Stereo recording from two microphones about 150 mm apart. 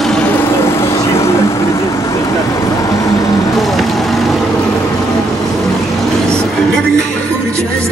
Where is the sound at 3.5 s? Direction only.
Centre (ahead or behind).